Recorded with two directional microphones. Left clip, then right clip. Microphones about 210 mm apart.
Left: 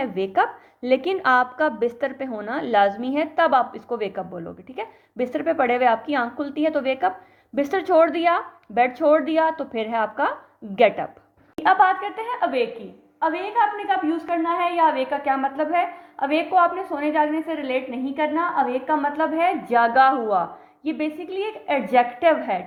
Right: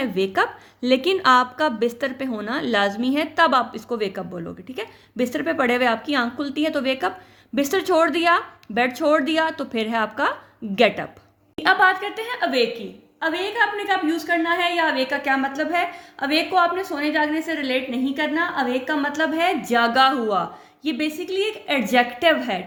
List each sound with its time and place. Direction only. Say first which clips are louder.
0.0 s a woman's voice: even; 45° right (ahead or behind)